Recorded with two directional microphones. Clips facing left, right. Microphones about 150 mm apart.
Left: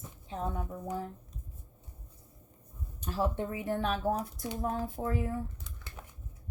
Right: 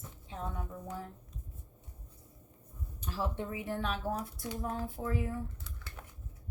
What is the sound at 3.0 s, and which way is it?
Speech, 45° left (ahead or behind).